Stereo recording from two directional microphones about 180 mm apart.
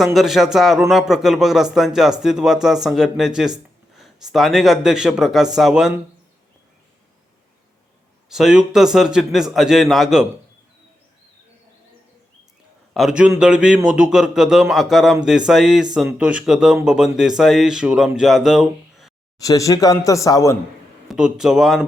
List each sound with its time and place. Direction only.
0.0 s speech: centre (ahead or behind)
8.3 s speech: 5° right (ahead or behind)
12.9 s a man's voice: centre (ahead or behind)
19.4 s speech: 20° left (ahead or behind)
21.1 s speech: 5° right (ahead or behind)